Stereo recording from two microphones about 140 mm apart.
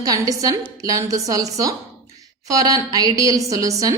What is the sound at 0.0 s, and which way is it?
A woman's voice, 25° right (ahead or behind).